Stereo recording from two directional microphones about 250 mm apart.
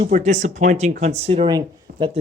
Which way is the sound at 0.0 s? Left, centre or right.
Right.